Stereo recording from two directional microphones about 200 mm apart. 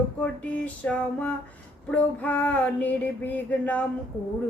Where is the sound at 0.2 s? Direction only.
5° left (ahead or behind).